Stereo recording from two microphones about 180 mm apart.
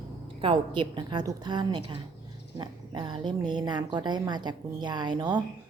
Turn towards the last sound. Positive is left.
turn(degrees=-25)  # may be behind; listen again after turning